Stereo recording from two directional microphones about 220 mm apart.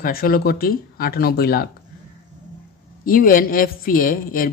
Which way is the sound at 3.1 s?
40° left (ahead or behind).